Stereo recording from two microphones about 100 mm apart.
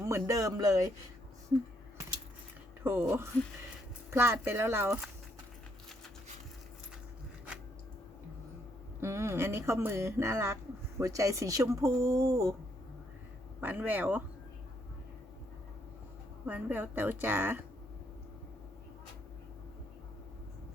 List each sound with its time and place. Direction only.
0.0 s speech: 35° right (ahead or behind)
2.8 s speech: 25° right (ahead or behind)
9.0 s speech: 30° right (ahead or behind)
13.6 s speech: 15° right (ahead or behind)
16.5 s speech: 20° right (ahead or behind)